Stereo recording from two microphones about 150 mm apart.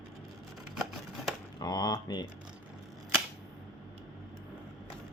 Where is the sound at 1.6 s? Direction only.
25° left (ahead or behind).